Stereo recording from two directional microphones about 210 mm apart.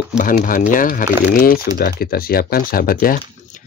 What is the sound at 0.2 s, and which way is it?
Speech, 40° left (ahead or behind).